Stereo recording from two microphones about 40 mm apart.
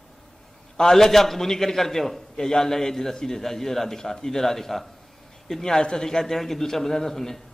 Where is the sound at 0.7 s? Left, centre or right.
Centre.